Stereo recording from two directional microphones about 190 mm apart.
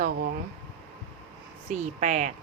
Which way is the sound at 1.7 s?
40° right (ahead or behind).